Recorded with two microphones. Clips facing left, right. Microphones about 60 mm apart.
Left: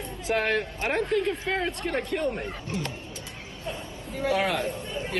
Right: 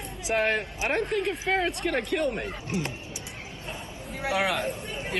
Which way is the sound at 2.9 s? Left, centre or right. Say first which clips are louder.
Even; centre.